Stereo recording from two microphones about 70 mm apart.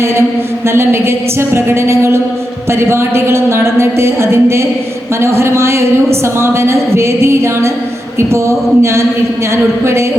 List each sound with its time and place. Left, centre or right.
0.7 s a woman's voice: right